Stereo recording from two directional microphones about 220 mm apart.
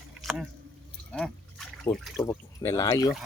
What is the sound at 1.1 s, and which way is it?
Liquid, 5° left (ahead or behind).